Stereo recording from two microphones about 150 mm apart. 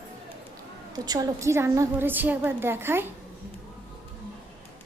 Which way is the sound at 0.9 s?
25° right (ahead or behind).